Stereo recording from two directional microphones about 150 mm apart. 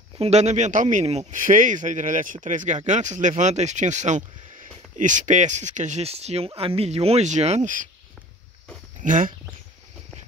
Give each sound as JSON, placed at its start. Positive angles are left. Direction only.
{"t": 0.2, "sound": "speech", "side_deg": -50}
{"t": 9.0, "sound": "speech", "side_deg": -60}